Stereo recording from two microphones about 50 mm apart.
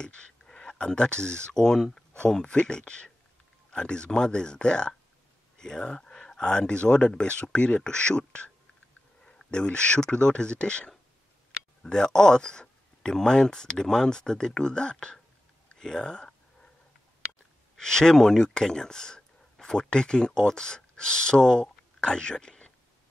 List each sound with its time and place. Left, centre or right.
0.0 s speech: centre
17.7 s speech: centre